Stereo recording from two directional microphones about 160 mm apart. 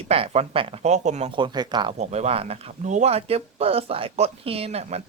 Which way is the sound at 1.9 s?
40° right (ahead or behind).